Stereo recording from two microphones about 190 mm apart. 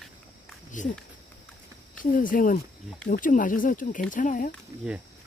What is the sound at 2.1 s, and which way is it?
Speech, 45° left (ahead or behind).